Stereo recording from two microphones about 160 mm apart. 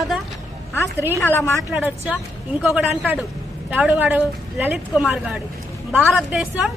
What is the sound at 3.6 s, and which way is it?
A woman's voice, 10° right (ahead or behind).